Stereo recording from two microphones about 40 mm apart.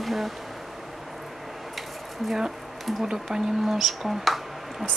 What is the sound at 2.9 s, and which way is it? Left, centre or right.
Speech, centre.